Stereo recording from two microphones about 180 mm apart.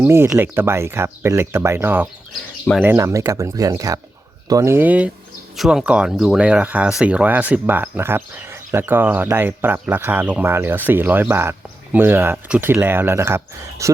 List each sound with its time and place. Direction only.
0.0 s speech: 15° right (ahead or behind)